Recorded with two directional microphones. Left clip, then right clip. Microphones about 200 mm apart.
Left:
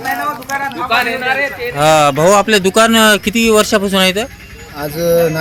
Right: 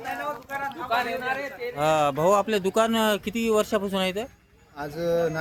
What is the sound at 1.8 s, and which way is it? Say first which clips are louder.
Speech: left 12 dB; 10° right (ahead or behind).